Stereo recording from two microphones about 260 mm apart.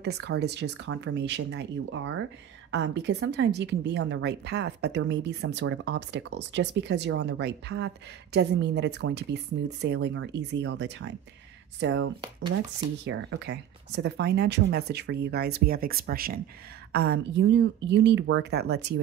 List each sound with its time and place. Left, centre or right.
0.0 s speech: right